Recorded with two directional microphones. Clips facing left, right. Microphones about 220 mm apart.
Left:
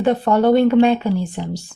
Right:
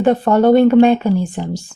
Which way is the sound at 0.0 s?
50° right (ahead or behind).